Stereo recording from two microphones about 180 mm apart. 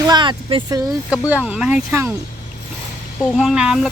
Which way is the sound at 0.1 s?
25° right (ahead or behind).